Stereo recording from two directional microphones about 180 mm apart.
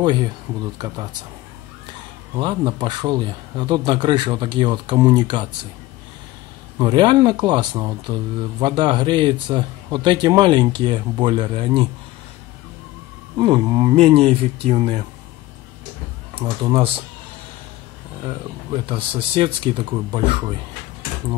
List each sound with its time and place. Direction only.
0.0 s speech: 25° right (ahead or behind)
2.3 s speech: 25° right (ahead or behind)
6.8 s speech: 25° right (ahead or behind)
13.4 s speech: 25° right (ahead or behind)
13.9 s speech: 35° right (ahead or behind)
16.3 s speech: 30° right (ahead or behind)
18.2 s speech: 30° right (ahead or behind)